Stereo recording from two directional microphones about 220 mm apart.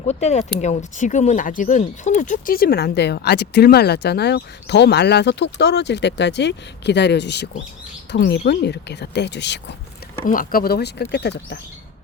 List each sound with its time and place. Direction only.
0.1 s speech: 30° left (ahead or behind); by 9.7 s 50° left (ahead or behind)
10.2 s speech: 40° left (ahead or behind)